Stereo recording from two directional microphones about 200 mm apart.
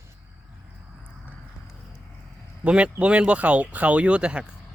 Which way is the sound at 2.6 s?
5° right (ahead or behind).